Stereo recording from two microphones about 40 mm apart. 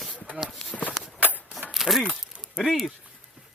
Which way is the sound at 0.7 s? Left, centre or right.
Left.